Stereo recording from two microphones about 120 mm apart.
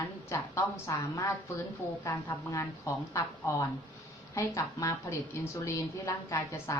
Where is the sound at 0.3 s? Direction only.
25° left (ahead or behind).